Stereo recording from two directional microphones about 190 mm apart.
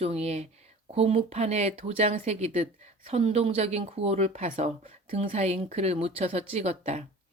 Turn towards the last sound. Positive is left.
turn(degrees=-35)  # may be behind; listen again after turning